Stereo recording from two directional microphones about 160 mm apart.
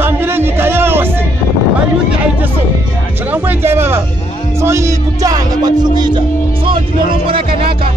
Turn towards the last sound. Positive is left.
turn(degrees=-35)  # may be behind; listen again after turning